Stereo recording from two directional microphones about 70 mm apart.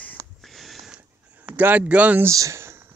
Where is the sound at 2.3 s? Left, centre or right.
Right.